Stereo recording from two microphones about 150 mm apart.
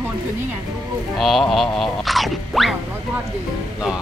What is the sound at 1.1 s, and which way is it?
Music, centre (ahead or behind).